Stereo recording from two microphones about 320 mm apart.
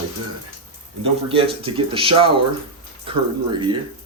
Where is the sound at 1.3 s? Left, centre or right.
Centre.